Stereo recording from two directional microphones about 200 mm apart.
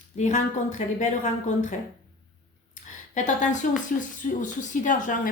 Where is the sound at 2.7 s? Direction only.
35° left (ahead or behind).